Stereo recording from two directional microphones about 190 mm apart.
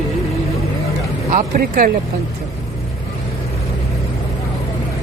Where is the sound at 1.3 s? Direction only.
45° right (ahead or behind).